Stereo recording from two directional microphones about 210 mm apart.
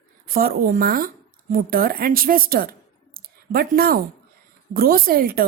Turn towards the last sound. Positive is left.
turn(degrees=-45)  # may be behind; listen again after turning